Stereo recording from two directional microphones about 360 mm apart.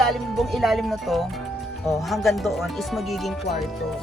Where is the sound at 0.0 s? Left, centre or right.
Centre.